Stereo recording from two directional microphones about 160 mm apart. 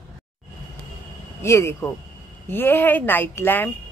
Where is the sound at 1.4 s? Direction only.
15° left (ahead or behind).